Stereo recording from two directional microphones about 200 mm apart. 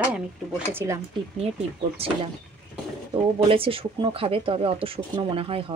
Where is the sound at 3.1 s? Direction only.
25° right (ahead or behind).